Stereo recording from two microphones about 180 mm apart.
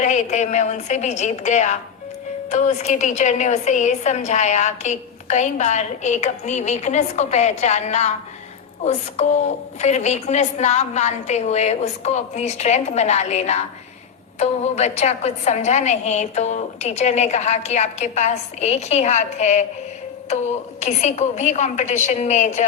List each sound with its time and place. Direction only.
0.0 s a woman's voice: 40° left (ahead or behind)
20.8 s a woman's voice: 40° left (ahead or behind)